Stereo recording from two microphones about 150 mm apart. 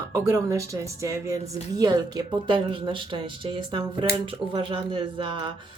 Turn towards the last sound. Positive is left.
turn(degrees=-30)  # may be behind; listen again after turning